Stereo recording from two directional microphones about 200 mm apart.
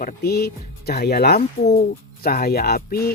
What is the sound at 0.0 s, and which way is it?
Speech, 50° left (ahead or behind).